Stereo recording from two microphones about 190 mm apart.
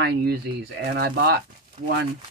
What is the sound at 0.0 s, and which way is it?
Speech, 55° right (ahead or behind).